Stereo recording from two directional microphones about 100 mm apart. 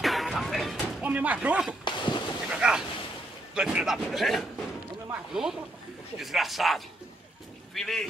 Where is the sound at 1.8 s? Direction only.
50° left (ahead or behind).